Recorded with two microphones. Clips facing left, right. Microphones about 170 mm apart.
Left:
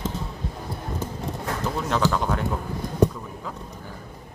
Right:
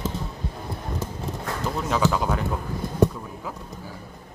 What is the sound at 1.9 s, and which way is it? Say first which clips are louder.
Speech: right 1 dB; 5° right (ahead or behind).